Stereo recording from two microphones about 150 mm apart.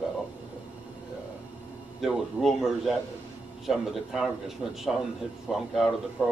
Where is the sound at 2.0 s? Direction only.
Centre (ahead or behind).